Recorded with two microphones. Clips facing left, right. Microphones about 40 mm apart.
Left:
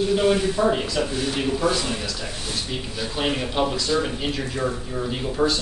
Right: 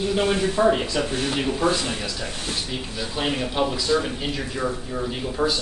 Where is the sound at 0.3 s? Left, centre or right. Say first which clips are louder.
Right 1 dB; centre.